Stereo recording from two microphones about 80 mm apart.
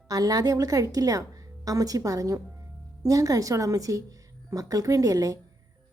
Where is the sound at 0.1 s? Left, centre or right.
Right.